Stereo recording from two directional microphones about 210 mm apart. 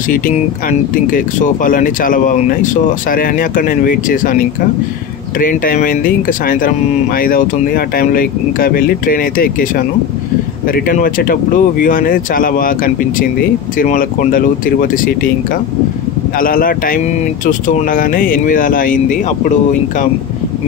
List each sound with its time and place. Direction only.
0.7 s speech: 40° left (ahead or behind)
5.4 s speech: 40° left (ahead or behind)
16.3 s speech: 40° left (ahead or behind)